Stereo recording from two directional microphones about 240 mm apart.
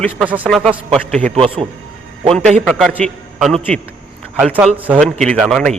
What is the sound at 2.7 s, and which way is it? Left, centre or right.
A man's voice, centre.